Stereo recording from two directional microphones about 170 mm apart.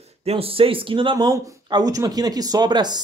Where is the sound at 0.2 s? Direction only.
35° right (ahead or behind).